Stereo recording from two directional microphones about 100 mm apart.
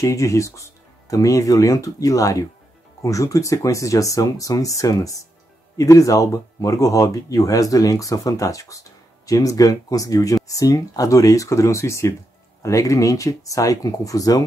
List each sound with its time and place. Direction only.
0.0 s speech: 30° left (ahead or behind)